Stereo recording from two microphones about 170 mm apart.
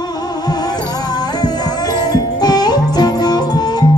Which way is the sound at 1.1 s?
25° left (ahead or behind).